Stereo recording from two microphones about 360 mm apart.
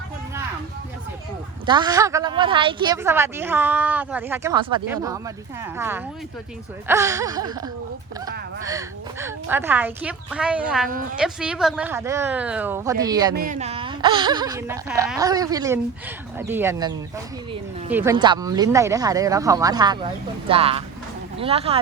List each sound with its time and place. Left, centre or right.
1.6 s a woman's voice: centre
13.3 s a woman's voice: right
17.9 s a woman's voice: centre